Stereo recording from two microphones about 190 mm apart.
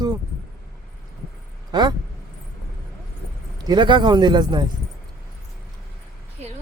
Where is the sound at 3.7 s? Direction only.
25° right (ahead or behind).